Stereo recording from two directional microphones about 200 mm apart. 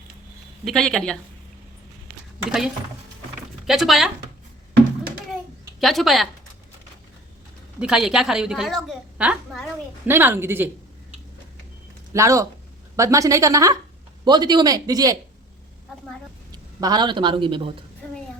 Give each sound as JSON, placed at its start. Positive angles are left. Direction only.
{"t": 0.6, "sound": "a woman's voice", "side_deg": 0}
{"t": 2.4, "sound": "a woman's voice", "side_deg": -5}
{"t": 3.7, "sound": "a woman's voice", "side_deg": 0}
{"t": 5.8, "sound": "a woman's voice", "side_deg": 0}
{"t": 7.8, "sound": "a woman's voice", "side_deg": -5}
{"t": 12.1, "sound": "a woman's voice", "side_deg": -15}
{"t": 16.5, "sound": "a man's voice", "side_deg": -20}